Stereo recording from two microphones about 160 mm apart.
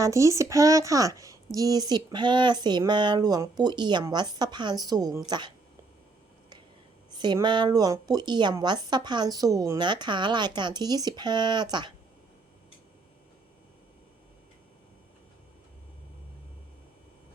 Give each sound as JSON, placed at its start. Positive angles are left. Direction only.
{"t": 0.0, "sound": "a woman's voice", "side_deg": -20}
{"t": 7.1, "sound": "a woman's voice", "side_deg": -25}